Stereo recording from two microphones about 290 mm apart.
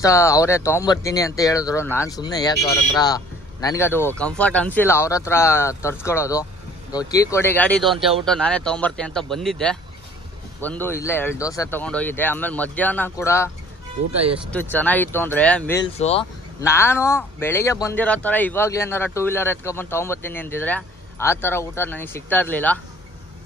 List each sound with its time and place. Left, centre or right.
0.0 s speech: centre
3.6 s speech: centre
14.3 s speech: centre
16.0 s speech: left
16.6 s speech: centre